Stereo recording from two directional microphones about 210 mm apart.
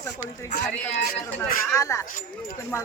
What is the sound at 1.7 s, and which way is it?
Speech, 15° left (ahead or behind).